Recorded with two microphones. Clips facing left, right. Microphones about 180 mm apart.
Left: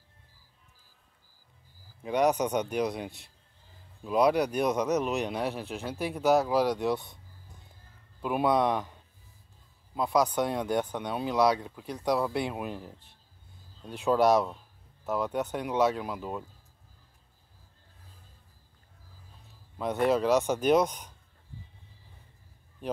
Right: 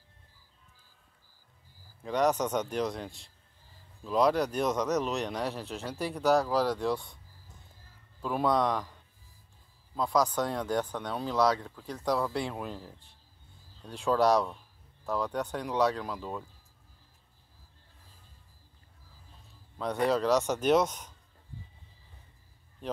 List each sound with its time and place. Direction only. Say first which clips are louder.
2.0 s speech: left 2 dB; 15° left (ahead or behind)
8.2 s speech: left 2 dB; 15° left (ahead or behind)
10.0 s speech: left 2 dB; 20° left (ahead or behind)
20.1 s speech: left 2 dB; 15° left (ahead or behind)
20.4 s speech: left 1 dB; centre (ahead or behind)
20.8 s speech: left 2 dB; 10° left (ahead or behind)